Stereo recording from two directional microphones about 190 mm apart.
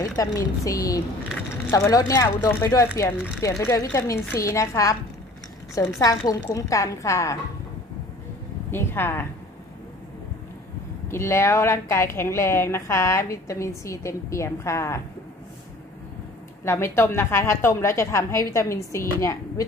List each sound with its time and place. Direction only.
0.2 s a woman's voice: 15° left (ahead or behind)
8.7 s a woman's voice: 10° left (ahead or behind)
11.1 s a woman's voice: 15° left (ahead or behind)
16.6 s a woman's voice: 15° left (ahead or behind)